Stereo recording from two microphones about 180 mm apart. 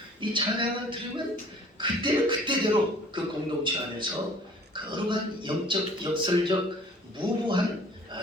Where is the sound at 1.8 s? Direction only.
25° right (ahead or behind).